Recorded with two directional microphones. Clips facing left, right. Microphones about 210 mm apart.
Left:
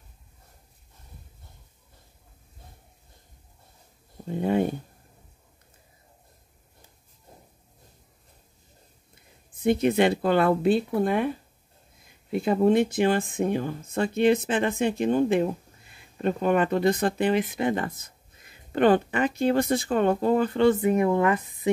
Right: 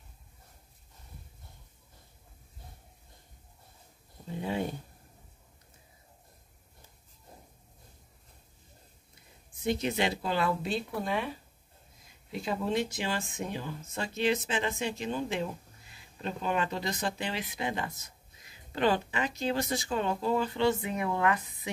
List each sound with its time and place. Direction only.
4.3 s speech: 55° left (ahead or behind)
9.6 s speech: 55° left (ahead or behind)
12.3 s speech: 55° left (ahead or behind)